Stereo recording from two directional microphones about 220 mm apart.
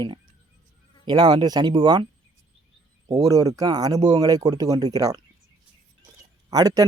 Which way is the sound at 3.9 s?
30° right (ahead or behind).